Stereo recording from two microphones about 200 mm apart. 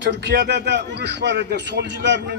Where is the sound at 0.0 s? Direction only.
55° right (ahead or behind).